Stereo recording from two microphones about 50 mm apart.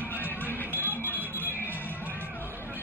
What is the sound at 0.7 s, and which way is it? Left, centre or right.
Smoke detector, right.